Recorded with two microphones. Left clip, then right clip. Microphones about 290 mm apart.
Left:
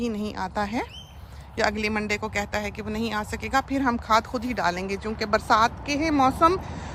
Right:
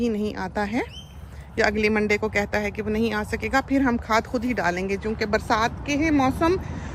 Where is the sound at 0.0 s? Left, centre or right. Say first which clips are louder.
Right 3 dB; centre.